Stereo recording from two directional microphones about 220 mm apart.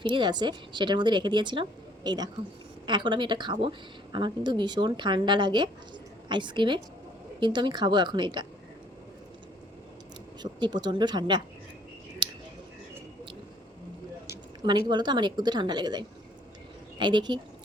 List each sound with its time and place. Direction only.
0.0 s a woman's voice: 20° right (ahead or behind)
10.4 s a woman's voice: 20° right (ahead or behind)
14.3 s a woman's voice: 20° right (ahead or behind)